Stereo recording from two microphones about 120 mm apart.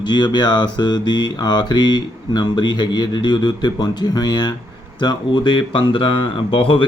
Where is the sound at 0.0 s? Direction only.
40° left (ahead or behind).